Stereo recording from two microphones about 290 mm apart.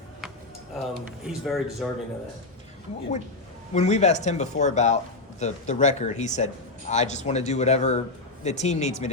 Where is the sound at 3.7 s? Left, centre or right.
Left.